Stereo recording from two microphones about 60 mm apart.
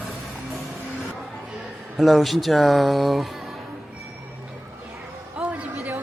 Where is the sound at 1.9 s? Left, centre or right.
Centre.